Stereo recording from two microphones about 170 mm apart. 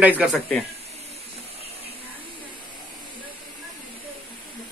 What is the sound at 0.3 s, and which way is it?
Speech, centre (ahead or behind).